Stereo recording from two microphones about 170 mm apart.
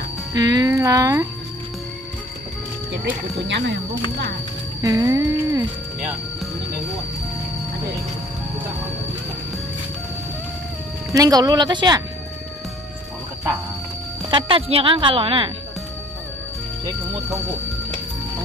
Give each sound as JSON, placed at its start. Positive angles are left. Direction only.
{"t": 0.3, "sound": "speech", "side_deg": -20}
{"t": 3.4, "sound": "speech", "side_deg": -90}
{"t": 4.8, "sound": "a sound", "side_deg": -20}
{"t": 11.1, "sound": "speech", "side_deg": -20}
{"t": 14.3, "sound": "a woman's voice", "side_deg": -30}